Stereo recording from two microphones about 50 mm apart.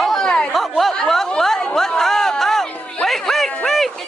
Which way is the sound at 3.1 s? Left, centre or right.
Centre.